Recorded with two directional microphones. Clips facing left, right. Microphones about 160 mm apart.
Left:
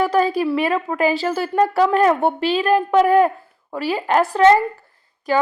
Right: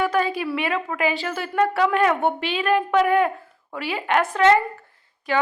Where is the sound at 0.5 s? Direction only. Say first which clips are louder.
Left 5 dB; 35° left (ahead or behind).